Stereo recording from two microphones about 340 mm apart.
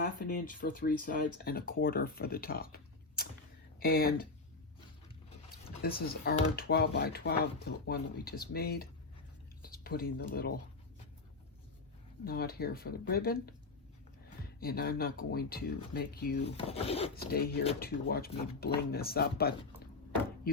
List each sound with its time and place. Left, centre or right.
0.0 s speech: left
5.6 s a sound: centre
6.2 s speech: left
12.2 s speech: left
14.6 s speech: left
16.6 s speech: centre